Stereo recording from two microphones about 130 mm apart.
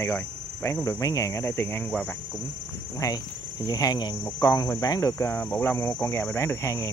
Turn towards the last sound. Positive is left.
turn(degrees=25)  # may be behind; listen again after turning